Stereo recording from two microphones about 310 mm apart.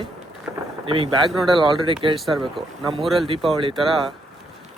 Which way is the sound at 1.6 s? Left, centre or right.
Centre.